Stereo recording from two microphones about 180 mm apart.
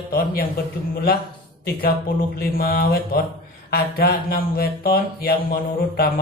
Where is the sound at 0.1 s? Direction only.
55° left (ahead or behind).